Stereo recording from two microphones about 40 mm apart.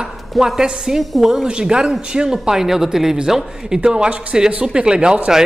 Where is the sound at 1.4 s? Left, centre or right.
Right.